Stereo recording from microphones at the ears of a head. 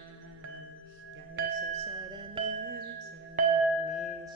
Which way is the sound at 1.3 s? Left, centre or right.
Right.